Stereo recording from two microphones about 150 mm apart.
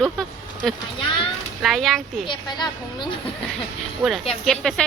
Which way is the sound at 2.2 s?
30° left (ahead or behind).